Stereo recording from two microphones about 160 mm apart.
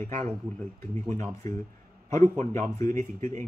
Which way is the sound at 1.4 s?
25° left (ahead or behind).